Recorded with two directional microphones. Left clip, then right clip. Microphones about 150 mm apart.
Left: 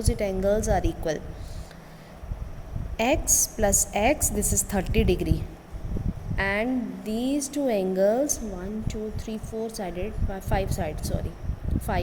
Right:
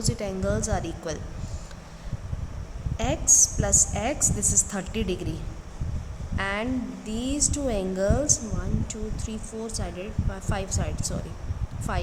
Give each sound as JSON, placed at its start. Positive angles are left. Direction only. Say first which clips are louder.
{"t": 0.0, "sound": "a woman's voice", "louder": "left 4 dB", "side_deg": 20}
{"t": 3.0, "sound": "a woman's voice", "louder": "right 1 dB", "side_deg": 25}